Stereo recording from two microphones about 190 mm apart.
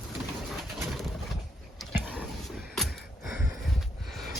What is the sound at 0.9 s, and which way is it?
Pigeon, centre (ahead or behind).